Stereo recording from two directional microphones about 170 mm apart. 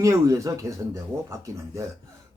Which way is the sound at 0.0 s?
20° right (ahead or behind).